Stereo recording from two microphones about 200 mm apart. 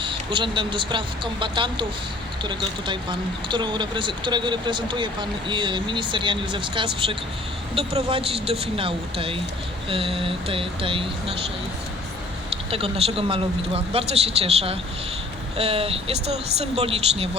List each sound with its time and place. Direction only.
0.0 s speech: 25° right (ahead or behind)
12.7 s speech: 30° right (ahead or behind)